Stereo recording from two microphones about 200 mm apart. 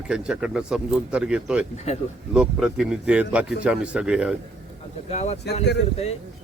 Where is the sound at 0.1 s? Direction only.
5° right (ahead or behind).